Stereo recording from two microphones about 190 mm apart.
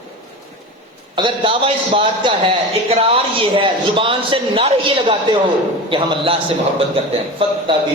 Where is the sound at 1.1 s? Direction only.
25° right (ahead or behind).